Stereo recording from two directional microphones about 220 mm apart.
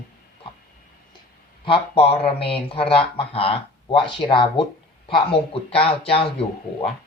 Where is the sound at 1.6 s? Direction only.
25° left (ahead or behind).